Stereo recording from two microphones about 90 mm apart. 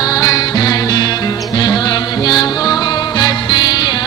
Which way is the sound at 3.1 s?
55° left (ahead or behind).